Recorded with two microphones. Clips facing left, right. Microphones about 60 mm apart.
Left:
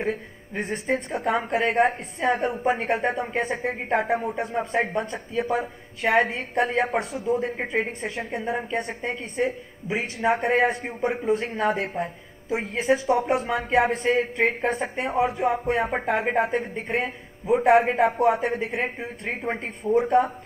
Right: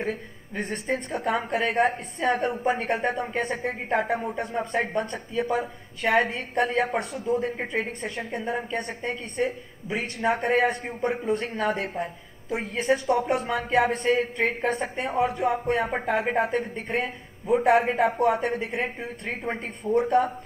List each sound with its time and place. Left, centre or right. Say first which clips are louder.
0.0 s a woman's voice: left 2 dB; centre
7.5 s speech: left 2 dB; centre
8.3 s a woman's voice: left 1 dB; centre